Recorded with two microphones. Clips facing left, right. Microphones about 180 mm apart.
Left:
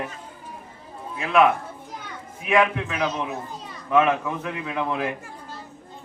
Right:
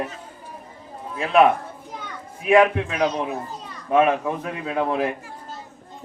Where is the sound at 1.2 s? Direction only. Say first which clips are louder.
Right 2 dB; 30° right (ahead or behind).